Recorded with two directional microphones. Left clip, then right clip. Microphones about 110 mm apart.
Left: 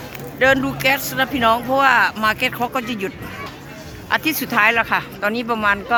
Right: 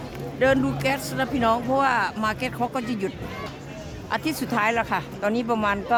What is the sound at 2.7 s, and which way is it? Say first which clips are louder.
Speech: left 5 dB; 15° right (ahead or behind).